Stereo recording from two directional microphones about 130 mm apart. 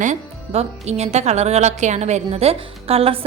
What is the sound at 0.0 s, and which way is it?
Speech, 60° right (ahead or behind).